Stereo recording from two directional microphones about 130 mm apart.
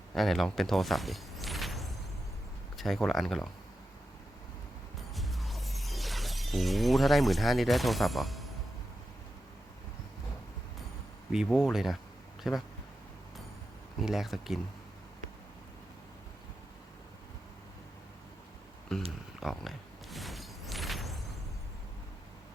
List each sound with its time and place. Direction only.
0.1 s a sound: centre (ahead or behind)
2.7 s speech: centre (ahead or behind)
5.1 s shatter: centre (ahead or behind)
11.3 s speech: 5° right (ahead or behind)
14.0 s speech: centre (ahead or behind)
18.9 s speech: 5° left (ahead or behind)
19.4 s a sound: centre (ahead or behind)